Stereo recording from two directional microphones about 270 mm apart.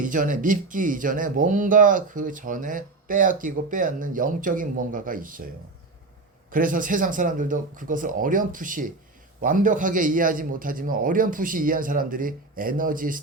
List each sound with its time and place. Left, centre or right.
0.0 s speech: right
6.5 s a man's voice: right